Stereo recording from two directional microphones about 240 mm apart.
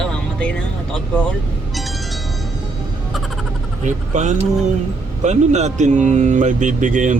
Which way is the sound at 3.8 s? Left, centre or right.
Right.